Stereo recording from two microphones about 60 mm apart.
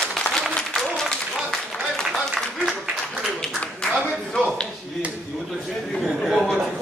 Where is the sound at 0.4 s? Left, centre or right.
Centre.